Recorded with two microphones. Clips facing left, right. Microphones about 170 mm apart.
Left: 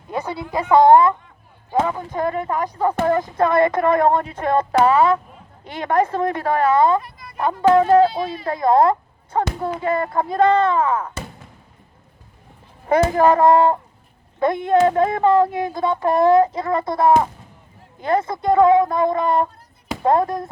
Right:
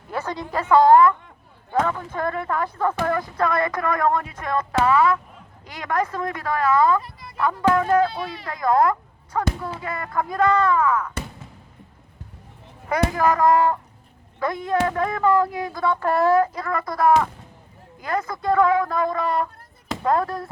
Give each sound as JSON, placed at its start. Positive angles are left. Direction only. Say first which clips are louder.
{"t": 0.1, "sound": "a woman's voice", "louder": "left 2 dB", "side_deg": 10}
{"t": 13.1, "sound": "speech", "louder": "left 3 dB", "side_deg": 30}